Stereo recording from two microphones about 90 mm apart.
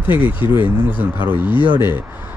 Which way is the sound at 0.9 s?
60° left (ahead or behind).